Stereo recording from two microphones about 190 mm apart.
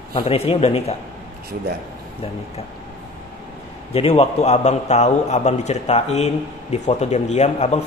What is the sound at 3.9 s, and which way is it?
A man's voice, 30° left (ahead or behind).